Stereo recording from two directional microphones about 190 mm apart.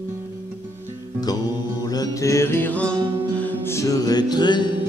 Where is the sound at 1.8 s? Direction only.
20° left (ahead or behind).